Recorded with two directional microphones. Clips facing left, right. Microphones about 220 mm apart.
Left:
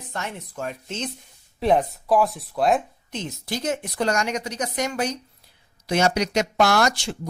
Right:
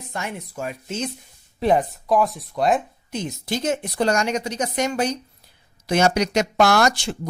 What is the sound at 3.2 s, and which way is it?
Speech, 20° right (ahead or behind).